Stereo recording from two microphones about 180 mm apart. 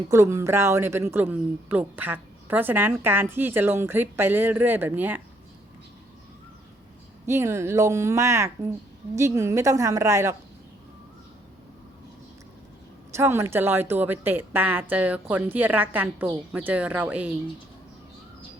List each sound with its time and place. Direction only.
0.1 s a woman's voice: 15° right (ahead or behind)
7.3 s a woman's voice: 15° right (ahead or behind)
13.1 s a woman's voice: 15° right (ahead or behind)